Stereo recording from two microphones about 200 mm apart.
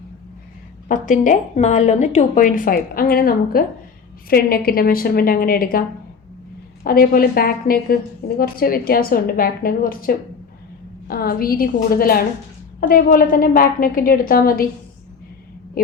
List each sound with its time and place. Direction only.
0.9 s a woman's voice: 40° left (ahead or behind)
6.8 s a woman's voice: 50° left (ahead or behind)